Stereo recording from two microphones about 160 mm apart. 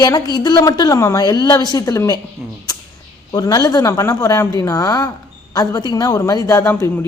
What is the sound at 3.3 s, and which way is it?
Speech, 25° left (ahead or behind).